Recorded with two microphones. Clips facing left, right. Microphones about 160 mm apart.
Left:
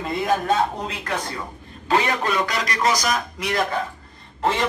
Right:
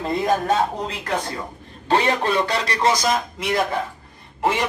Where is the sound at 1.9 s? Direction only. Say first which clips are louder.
Right 2 dB; 30° right (ahead or behind).